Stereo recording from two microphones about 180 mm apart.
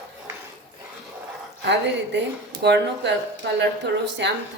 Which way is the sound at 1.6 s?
75° right (ahead or behind).